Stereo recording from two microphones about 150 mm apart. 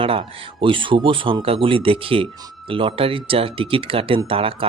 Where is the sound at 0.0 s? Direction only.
35° right (ahead or behind).